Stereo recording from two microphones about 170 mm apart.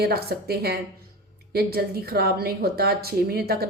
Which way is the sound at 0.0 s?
65° right (ahead or behind).